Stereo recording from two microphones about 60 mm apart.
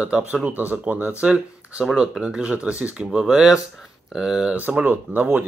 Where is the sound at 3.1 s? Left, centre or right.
Centre.